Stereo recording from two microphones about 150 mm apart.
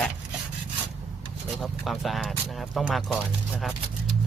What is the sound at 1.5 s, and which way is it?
Speech, centre (ahead or behind).